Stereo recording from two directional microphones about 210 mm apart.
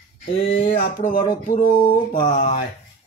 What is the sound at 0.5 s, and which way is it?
Speech, 45° left (ahead or behind).